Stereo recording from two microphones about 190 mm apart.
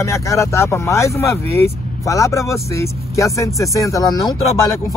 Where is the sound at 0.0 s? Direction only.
15° left (ahead or behind).